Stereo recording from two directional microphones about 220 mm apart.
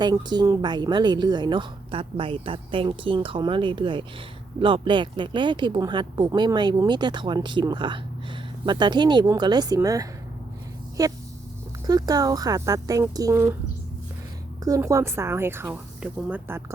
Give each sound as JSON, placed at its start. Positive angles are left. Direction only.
{"t": 0.0, "sound": "a woman's voice", "side_deg": -20}
{"t": 14.6, "sound": "a woman's voice", "side_deg": -15}